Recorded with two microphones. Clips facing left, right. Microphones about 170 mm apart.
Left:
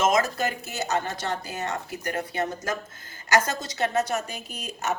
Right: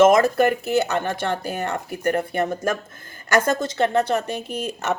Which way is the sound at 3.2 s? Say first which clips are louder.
Right 5 dB; 55° right (ahead or behind).